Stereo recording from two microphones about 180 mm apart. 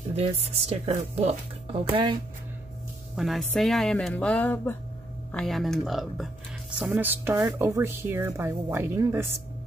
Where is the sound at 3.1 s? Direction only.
Centre (ahead or behind).